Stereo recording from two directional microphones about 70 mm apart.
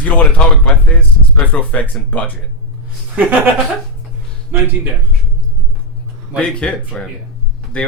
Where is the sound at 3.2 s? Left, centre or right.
Right.